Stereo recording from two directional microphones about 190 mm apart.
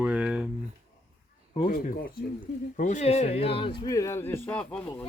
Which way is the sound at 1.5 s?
45° left (ahead or behind).